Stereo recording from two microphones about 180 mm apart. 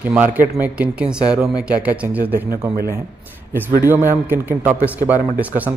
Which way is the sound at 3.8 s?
10° right (ahead or behind).